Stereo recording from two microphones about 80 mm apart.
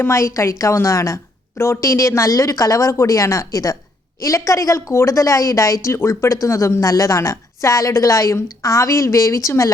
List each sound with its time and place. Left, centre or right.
0.0 s a woman's voice: left